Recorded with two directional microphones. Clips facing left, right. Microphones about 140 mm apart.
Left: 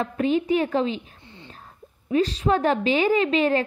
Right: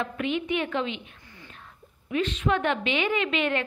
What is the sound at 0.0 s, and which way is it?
A woman's voice, 35° left (ahead or behind).